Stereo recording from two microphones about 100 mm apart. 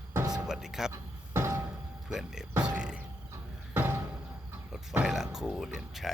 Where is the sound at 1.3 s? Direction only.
25° right (ahead or behind).